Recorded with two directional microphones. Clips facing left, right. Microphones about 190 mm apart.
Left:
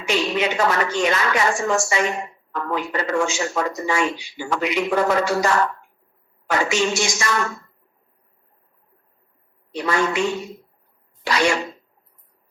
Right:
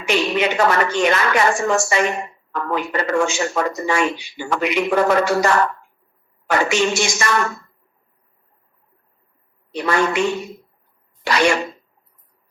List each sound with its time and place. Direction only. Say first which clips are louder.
0.0 s a woman's voice: right 2 dB; 65° right (ahead or behind)
9.7 s a woman's voice: right 2 dB; 65° right (ahead or behind)